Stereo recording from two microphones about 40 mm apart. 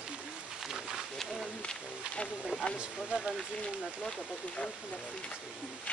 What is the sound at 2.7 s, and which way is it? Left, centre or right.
Speech, centre.